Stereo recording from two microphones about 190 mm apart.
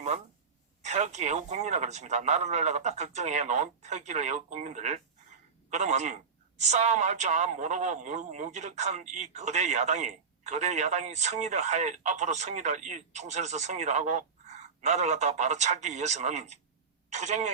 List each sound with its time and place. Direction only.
0.8 s a man's voice: 35° right (ahead or behind)